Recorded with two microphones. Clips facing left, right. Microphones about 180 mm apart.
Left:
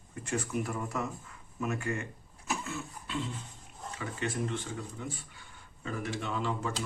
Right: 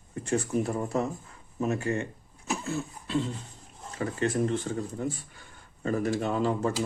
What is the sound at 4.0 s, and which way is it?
Speech, 40° right (ahead or behind).